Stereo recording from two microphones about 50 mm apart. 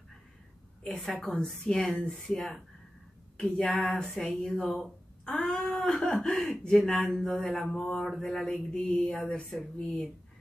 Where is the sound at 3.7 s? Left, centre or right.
Centre.